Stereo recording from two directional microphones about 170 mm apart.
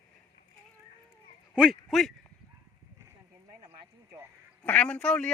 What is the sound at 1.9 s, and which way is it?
Speech, centre (ahead or behind).